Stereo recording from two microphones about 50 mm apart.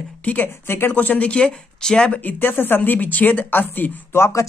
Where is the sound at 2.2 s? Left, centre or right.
Left.